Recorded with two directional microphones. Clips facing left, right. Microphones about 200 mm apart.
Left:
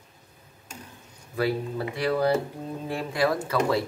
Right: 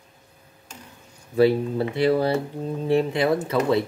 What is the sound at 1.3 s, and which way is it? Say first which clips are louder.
Speech: right 8 dB; 25° right (ahead or behind).